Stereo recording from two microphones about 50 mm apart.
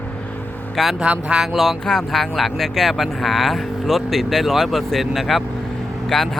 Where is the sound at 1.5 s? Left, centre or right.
Centre.